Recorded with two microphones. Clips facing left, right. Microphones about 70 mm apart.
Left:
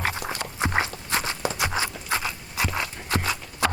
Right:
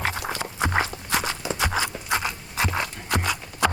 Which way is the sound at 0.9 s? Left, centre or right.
Right.